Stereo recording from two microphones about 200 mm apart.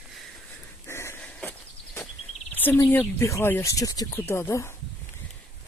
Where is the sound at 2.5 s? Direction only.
10° left (ahead or behind).